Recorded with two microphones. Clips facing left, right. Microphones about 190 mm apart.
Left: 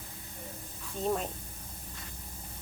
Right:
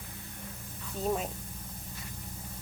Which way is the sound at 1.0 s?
5° right (ahead or behind).